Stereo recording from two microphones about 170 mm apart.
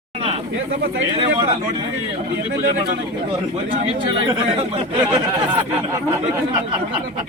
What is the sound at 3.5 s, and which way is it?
A man's voice, 35° right (ahead or behind).